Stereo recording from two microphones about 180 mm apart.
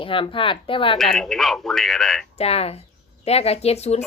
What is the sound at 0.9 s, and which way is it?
A man's voice, centre (ahead or behind).